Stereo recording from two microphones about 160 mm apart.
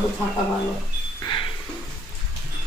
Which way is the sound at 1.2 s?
30° left (ahead or behind).